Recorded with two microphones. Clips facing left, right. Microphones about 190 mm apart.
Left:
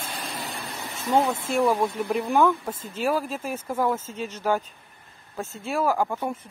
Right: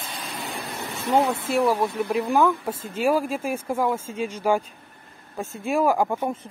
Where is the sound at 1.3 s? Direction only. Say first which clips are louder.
Right 1 dB; 5° right (ahead or behind).